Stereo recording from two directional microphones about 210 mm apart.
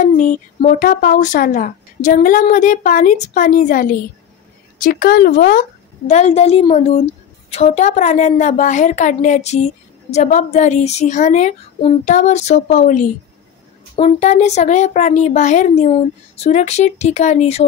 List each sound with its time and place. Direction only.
0.0 s speech: 35° left (ahead or behind)